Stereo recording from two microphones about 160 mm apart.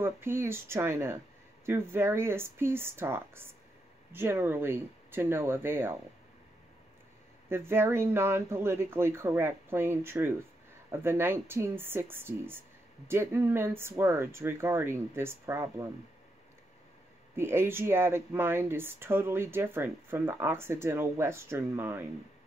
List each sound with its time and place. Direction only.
0.0 s speech: 15° right (ahead or behind)
7.4 s speech: 15° right (ahead or behind)
17.4 s speech: 15° right (ahead or behind)